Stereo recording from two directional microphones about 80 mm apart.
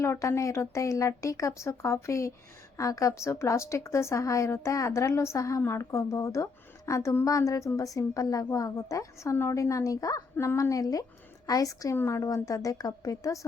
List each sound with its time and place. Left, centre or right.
0.0 s a woman's voice: left
10.3 s speech: left
10.6 s a woman's voice: left
11.9 s a woman's voice: left